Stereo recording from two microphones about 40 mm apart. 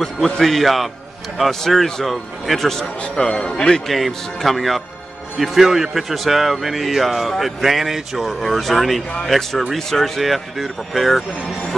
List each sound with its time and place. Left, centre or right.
0.0 s a man's voice: centre
3.2 s speech: centre
3.8 s a man's voice: centre